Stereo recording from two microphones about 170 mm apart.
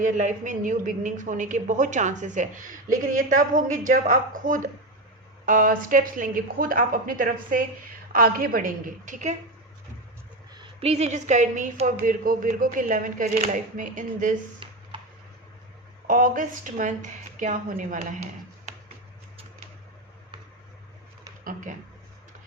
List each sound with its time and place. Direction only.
0.0 s a woman's voice: 45° right (ahead or behind)
10.5 s a woman's voice: 30° right (ahead or behind); by 14.3 s 50° right (ahead or behind)
14.6 s a sound: 30° right (ahead or behind)
16.0 s a woman's voice: 50° right (ahead or behind)
21.4 s a woman's voice: 50° right (ahead or behind)